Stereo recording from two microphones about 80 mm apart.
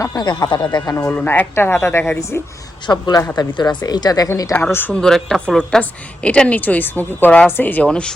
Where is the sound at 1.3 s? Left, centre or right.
Left.